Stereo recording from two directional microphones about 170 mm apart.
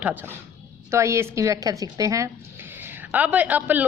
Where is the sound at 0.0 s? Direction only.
10° right (ahead or behind).